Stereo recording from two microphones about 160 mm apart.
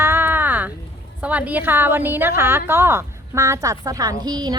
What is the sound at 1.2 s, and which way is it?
A woman's voice, 10° right (ahead or behind).